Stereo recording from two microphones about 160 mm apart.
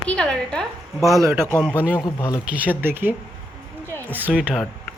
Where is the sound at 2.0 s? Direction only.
25° left (ahead or behind).